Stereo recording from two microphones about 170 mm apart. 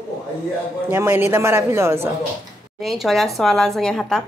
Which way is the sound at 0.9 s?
15° right (ahead or behind).